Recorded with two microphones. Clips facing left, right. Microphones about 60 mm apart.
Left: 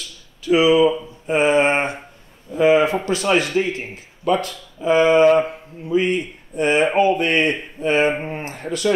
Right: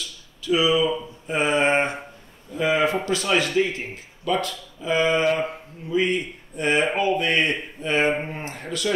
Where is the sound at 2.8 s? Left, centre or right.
Left.